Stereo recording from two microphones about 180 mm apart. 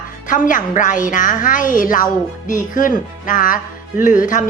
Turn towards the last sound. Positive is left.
turn(degrees=45)  # may be behind; listen again after turning